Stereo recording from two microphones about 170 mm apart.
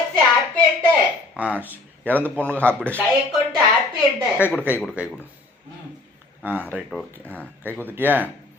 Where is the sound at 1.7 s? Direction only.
10° left (ahead or behind).